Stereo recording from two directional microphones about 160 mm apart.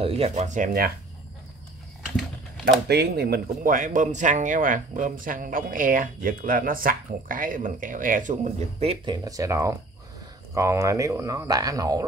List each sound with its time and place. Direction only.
0.0 s speech: 40° right (ahead or behind)
2.6 s speech: 90° right; by 8.9 s 40° right (ahead or behind)
9.0 s speech: 25° right (ahead or behind)